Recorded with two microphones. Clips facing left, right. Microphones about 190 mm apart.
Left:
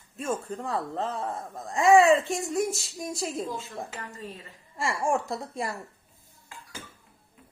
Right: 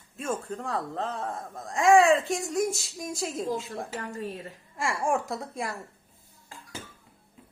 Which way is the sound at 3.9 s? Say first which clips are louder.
Right 5 dB; 45° right (ahead or behind).